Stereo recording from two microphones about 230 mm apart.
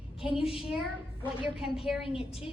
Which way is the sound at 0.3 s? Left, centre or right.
Centre.